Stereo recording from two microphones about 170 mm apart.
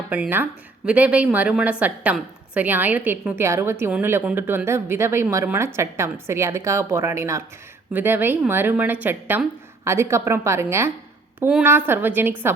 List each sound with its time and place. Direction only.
0.1 s a woman's voice: 10° right (ahead or behind)